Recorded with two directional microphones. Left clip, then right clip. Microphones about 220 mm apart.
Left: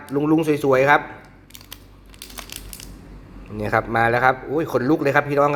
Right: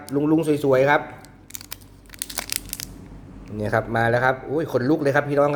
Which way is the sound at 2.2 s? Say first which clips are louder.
Right 6 dB; 25° right (ahead or behind).